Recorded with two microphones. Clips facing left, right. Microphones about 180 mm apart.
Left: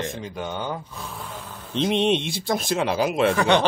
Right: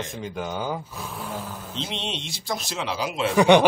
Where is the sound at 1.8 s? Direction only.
55° left (ahead or behind).